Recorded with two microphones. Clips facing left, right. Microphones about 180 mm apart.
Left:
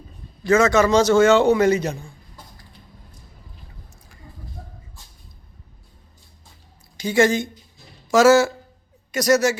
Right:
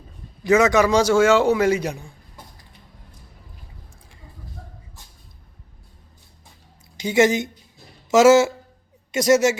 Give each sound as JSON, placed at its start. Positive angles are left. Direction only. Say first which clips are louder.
{"t": 0.4, "sound": "a man's voice", "louder": "even", "side_deg": -15}
{"t": 6.9, "sound": "a woman's voice", "louder": "even", "side_deg": -20}